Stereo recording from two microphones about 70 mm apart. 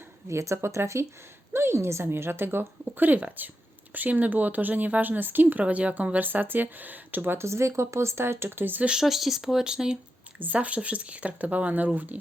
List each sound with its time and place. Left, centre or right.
0.3 s a woman's voice: right
8.9 s speech: centre
10.3 s speech: right